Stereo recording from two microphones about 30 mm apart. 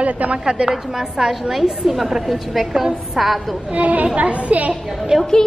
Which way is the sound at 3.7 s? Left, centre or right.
Right.